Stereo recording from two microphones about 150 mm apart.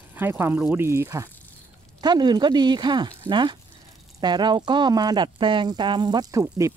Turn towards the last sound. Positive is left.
turn(degrees=-20)  # may be behind; listen again after turning